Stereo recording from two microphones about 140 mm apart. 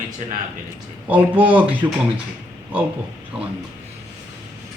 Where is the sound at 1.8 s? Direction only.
25° right (ahead or behind).